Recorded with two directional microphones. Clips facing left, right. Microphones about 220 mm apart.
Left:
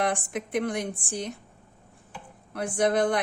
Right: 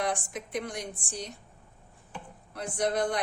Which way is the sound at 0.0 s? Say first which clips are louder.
Left 4 dB; 55° left (ahead or behind).